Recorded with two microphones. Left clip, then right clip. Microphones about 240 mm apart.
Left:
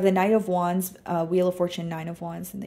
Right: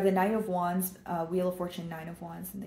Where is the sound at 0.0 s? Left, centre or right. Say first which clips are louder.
Left 6 dB; left.